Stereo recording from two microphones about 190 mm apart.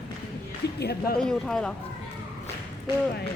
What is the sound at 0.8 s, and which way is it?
Speech, 60° left (ahead or behind).